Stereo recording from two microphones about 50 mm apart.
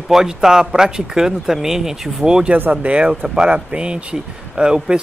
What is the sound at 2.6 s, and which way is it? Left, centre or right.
Speech, right.